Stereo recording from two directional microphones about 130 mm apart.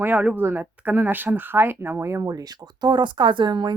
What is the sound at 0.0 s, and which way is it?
Speech, 15° right (ahead or behind).